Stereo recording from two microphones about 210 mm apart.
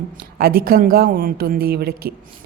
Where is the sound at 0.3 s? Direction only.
45° right (ahead or behind).